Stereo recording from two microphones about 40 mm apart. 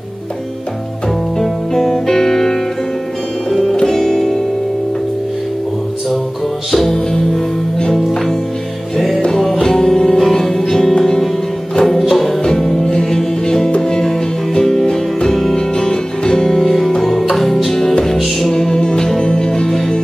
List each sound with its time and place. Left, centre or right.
1.4 s music: centre
3.7 s music: centre
6.7 s music: centre